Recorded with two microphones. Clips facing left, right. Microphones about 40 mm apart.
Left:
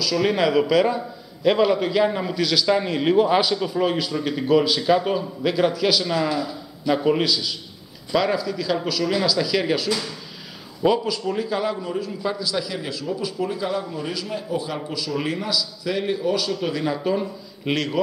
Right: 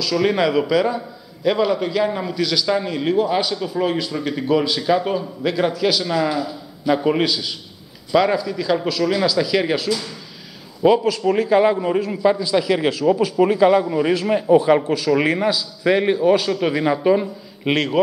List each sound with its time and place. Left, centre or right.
0.0 s speech: centre
2.8 s speech: centre
3.3 s speech: centre
11.2 s a man's voice: right
11.9 s a man's voice: right
12.3 s speech: right
12.6 s a man's voice: right; by 18.0 s centre